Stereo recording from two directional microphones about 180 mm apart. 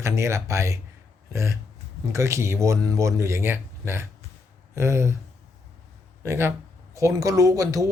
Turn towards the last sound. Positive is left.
turn(degrees=-20)  # may be behind; listen again after turning